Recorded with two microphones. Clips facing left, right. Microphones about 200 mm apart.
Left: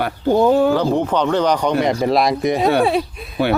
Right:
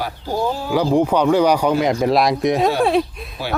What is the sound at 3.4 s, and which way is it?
Speech, 65° left (ahead or behind).